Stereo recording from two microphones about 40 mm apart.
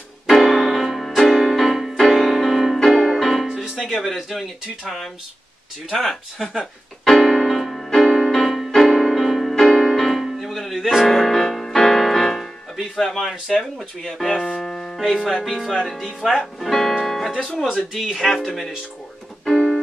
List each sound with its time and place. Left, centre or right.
0.3 s music: centre
4.0 s speech: centre
5.9 s speech: centre
7.1 s music: centre
9.7 s music: centre
12.9 s speech: centre
14.2 s piano: centre
15.0 s speech: centre
15.7 s speech: centre
19.4 s keyboard: left